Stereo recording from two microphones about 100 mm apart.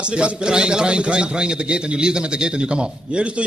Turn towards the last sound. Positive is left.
turn(degrees=-10)  # may be behind; listen again after turning